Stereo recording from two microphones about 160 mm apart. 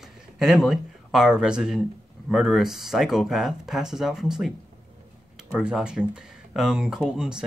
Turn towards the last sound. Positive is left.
turn(degrees=-5)  # may be behind; listen again after turning